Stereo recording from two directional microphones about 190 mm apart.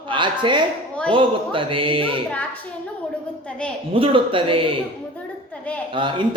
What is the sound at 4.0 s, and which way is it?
Speech, 30° right (ahead or behind).